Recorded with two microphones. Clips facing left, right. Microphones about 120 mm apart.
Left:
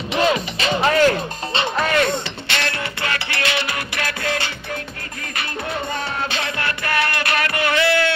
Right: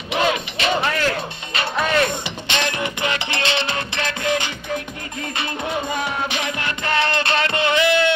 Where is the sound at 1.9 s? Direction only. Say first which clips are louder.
Left 1 dB; 15° right (ahead or behind).